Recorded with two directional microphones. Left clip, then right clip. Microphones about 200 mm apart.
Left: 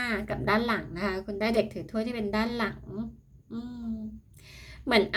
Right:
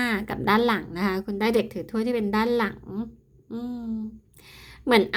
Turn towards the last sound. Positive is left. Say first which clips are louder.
# right 4 dB
turn(degrees=-30)  # may be behind; listen again after turning